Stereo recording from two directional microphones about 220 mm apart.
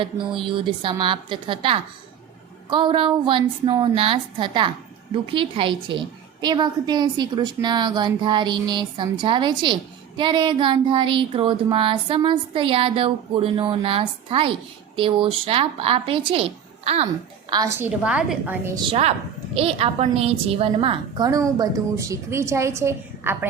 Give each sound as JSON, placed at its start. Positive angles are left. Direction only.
{"t": 0.0, "sound": "a woman's voice", "side_deg": -25}
{"t": 17.5, "sound": "a woman's voice", "side_deg": -15}